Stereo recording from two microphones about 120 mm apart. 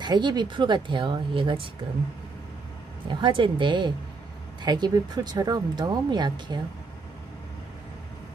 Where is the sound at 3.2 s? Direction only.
40° right (ahead or behind).